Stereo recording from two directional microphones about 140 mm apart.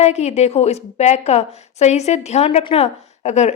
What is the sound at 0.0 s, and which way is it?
A woman's voice, 50° left (ahead or behind).